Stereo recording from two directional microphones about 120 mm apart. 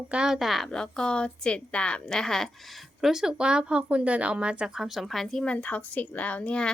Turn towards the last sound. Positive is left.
turn(degrees=10)  # may be behind; listen again after turning